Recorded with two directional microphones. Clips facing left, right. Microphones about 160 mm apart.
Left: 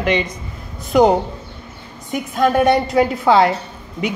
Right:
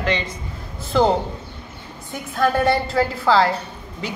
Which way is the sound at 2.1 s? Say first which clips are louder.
Left 4 dB; 15° left (ahead or behind).